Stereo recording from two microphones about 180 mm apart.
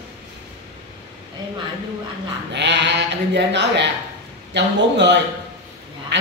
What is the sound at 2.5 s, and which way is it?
Speech, 75° right (ahead or behind).